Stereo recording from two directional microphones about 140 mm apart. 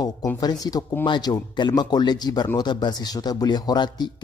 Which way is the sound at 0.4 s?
30° left (ahead or behind).